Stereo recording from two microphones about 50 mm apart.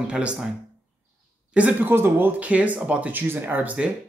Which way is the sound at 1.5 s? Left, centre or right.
Right.